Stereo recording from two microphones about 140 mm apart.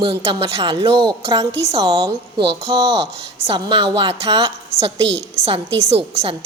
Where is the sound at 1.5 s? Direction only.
45° right (ahead or behind).